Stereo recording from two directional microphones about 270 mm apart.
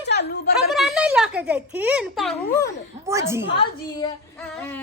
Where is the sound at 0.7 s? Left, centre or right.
Centre.